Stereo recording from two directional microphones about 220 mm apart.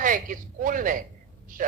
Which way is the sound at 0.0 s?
40° right (ahead or behind).